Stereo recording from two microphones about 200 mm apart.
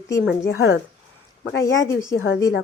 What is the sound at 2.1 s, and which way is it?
Speech, 75° left (ahead or behind).